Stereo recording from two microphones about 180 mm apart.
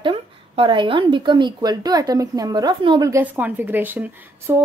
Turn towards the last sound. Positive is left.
turn(degrees=-10)  # may be behind; listen again after turning